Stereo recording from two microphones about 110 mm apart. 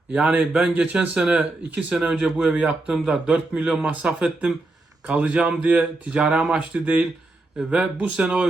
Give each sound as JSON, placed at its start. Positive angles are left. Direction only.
{"t": 0.1, "sound": "speech", "side_deg": -10}